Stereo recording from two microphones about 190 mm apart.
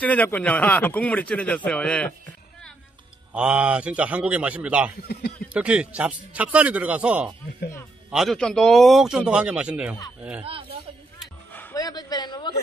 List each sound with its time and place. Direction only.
0.0 s speech: 10° left (ahead or behind)
3.3 s a man's voice: 5° right (ahead or behind)
11.5 s a sound: 15° left (ahead or behind)